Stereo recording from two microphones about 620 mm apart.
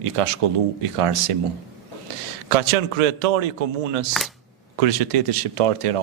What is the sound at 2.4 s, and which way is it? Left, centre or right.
A man's voice, right.